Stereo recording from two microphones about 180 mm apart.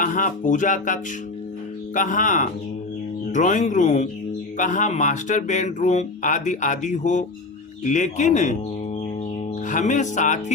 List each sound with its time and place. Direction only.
0.0 s speech: 45° left (ahead or behind)
9.6 s speech: 45° left (ahead or behind)